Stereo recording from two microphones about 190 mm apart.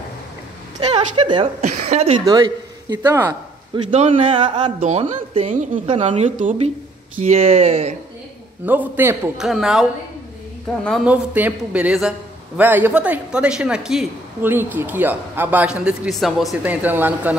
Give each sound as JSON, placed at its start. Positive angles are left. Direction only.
{"t": 1.2, "sound": "speech", "side_deg": -25}
{"t": 1.6, "sound": "a woman's voice", "side_deg": -35}
{"t": 2.2, "sound": "speech", "side_deg": -20}
{"t": 3.7, "sound": "a woman's voice", "side_deg": -35}
{"t": 8.6, "sound": "a man's voice", "side_deg": -10}
{"t": 11.1, "sound": "a man's voice", "side_deg": -10}